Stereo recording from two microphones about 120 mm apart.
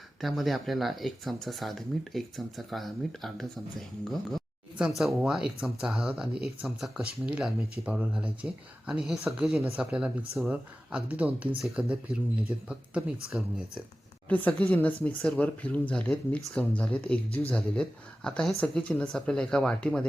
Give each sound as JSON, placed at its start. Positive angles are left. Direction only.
{"t": 0.2, "sound": "speech", "side_deg": 0}
{"t": 14.3, "sound": "speech", "side_deg": 10}